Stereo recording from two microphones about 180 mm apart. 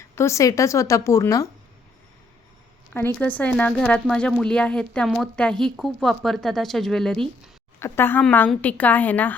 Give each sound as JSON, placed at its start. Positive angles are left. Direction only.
{"t": 0.2, "sound": "a woman's voice", "side_deg": 15}
{"t": 2.9, "sound": "speech", "side_deg": 10}
{"t": 7.8, "sound": "a woman's voice", "side_deg": 15}